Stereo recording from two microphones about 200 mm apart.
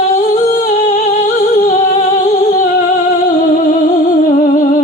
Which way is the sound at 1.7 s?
35° left (ahead or behind).